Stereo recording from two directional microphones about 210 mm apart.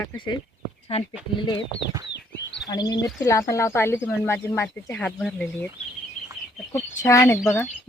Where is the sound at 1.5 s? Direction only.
60° left (ahead or behind).